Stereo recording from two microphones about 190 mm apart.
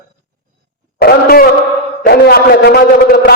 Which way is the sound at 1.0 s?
55° left (ahead or behind).